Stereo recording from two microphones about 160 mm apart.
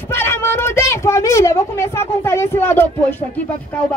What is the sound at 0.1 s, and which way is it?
A man's voice, 15° left (ahead or behind).